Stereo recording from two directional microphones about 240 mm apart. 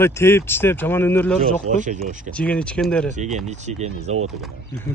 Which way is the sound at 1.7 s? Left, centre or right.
Right.